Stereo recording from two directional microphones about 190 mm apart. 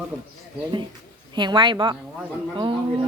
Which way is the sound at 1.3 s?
25° right (ahead or behind).